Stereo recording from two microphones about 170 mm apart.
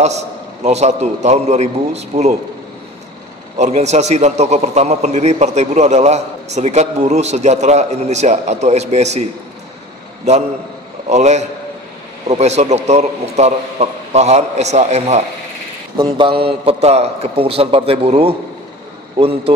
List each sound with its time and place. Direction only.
0.7 s a man's voice: 40° right (ahead or behind)
3.5 s a man's voice: 40° right (ahead or behind)
11.1 s a man's voice: 40° right (ahead or behind)
16.1 s a man's voice: 30° right (ahead or behind)